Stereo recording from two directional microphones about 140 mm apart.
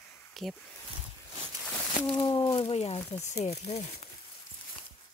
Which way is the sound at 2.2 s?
30° left (ahead or behind).